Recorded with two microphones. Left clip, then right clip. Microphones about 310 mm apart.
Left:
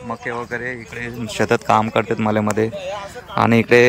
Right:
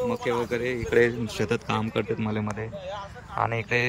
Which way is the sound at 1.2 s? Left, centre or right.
Centre.